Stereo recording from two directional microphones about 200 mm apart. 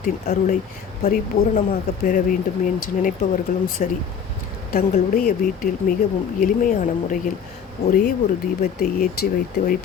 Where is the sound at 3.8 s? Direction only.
40° left (ahead or behind).